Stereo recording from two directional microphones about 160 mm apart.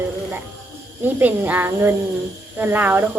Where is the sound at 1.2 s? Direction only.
10° right (ahead or behind).